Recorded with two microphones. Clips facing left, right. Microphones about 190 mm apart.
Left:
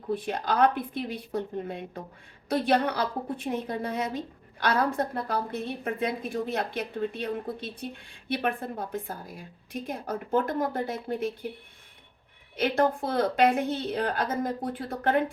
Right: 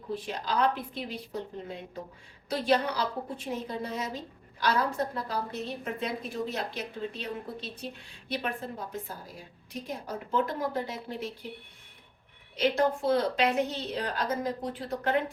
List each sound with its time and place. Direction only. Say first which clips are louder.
0.1 s a woman's voice: left 4 dB; 55° left (ahead or behind)
12.5 s a woman's voice: left 1 dB; 55° left (ahead or behind)